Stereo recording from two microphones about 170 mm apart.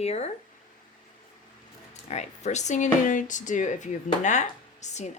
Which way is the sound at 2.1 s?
40° left (ahead or behind).